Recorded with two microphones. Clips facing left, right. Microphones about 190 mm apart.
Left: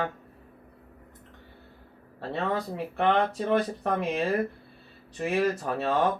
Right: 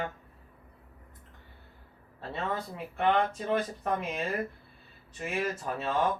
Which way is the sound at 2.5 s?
35° left (ahead or behind).